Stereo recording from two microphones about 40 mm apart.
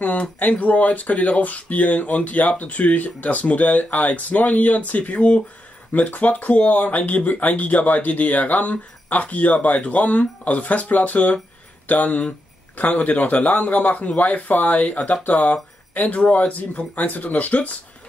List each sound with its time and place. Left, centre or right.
0.0 s speech: left